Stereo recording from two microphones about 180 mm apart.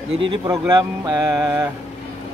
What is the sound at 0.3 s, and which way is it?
Speech, 20° right (ahead or behind).